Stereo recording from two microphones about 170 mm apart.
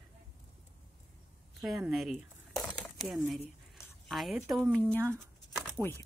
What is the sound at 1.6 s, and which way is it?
Speech, centre (ahead or behind).